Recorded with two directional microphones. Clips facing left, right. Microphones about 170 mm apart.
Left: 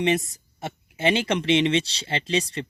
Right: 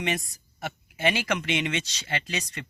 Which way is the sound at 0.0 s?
25° left (ahead or behind).